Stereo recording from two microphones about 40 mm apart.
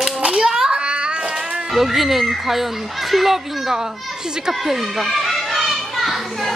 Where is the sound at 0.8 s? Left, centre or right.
Right.